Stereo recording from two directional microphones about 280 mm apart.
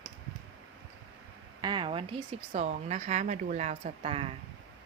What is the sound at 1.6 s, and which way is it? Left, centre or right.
Speech, centre.